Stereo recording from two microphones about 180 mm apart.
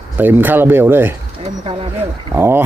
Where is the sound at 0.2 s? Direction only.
10° right (ahead or behind).